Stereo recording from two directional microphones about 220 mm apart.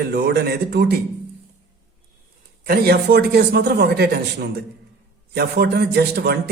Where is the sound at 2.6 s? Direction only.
45° right (ahead or behind).